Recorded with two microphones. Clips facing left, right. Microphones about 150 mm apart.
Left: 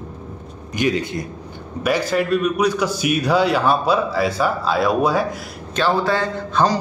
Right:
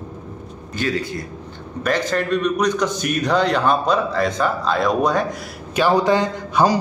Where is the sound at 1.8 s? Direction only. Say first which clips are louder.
Left 1 dB; 10° left (ahead or behind).